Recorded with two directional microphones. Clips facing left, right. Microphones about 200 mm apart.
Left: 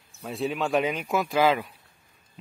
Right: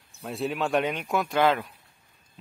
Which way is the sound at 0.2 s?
Centre (ahead or behind).